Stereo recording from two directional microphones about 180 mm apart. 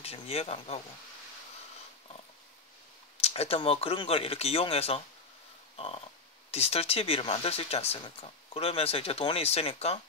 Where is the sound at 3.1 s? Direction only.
35° left (ahead or behind).